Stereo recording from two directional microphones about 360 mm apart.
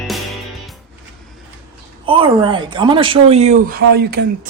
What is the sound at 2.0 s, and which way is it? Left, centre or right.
A woman's voice, centre.